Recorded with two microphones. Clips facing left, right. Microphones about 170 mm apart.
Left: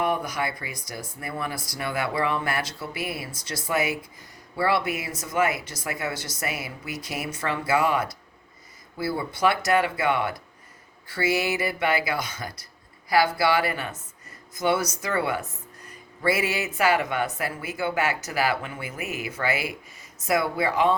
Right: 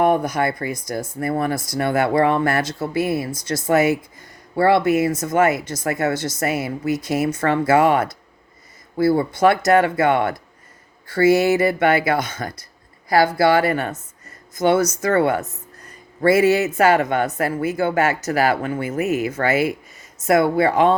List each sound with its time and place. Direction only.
0.0 s speech: 50° right (ahead or behind)